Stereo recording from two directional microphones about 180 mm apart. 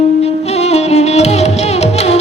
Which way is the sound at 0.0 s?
35° left (ahead or behind).